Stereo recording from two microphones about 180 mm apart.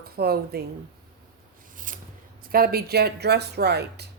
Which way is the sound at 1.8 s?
50° right (ahead or behind).